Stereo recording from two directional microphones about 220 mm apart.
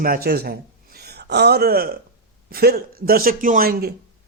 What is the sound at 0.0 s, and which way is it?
A man's voice, 40° right (ahead or behind).